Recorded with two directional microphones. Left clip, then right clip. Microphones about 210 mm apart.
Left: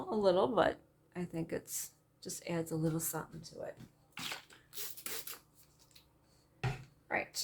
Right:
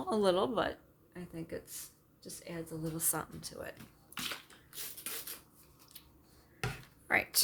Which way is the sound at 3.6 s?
50° right (ahead or behind).